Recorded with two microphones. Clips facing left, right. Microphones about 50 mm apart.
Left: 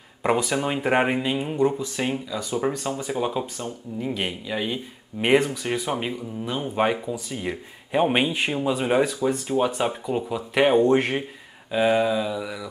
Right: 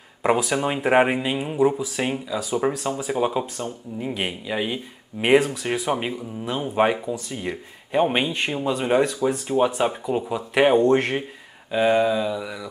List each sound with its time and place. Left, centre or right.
0.2 s speech: centre